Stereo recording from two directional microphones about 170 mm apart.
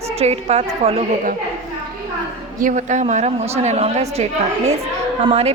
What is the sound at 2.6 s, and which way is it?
A woman's voice, 50° right (ahead or behind).